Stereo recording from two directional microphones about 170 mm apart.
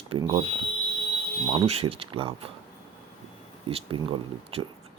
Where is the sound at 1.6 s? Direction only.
35° right (ahead or behind).